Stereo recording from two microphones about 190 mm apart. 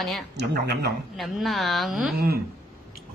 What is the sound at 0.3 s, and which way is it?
Speech, 60° right (ahead or behind).